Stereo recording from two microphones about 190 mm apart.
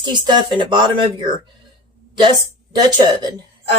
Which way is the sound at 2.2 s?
25° right (ahead or behind).